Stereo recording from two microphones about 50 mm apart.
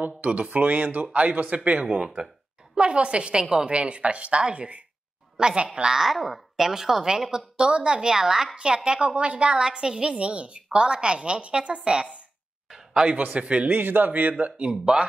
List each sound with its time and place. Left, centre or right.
0.0 s a woman's voice: right
5.9 s a woman's voice: centre; by 13.7 s right
13.7 s speech: right
14.4 s a woman's voice: right